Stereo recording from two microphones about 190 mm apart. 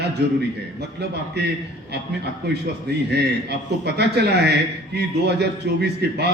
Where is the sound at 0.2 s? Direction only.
60° right (ahead or behind).